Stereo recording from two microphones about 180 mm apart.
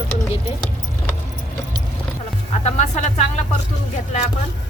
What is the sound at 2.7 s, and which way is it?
Speech, 40° left (ahead or behind).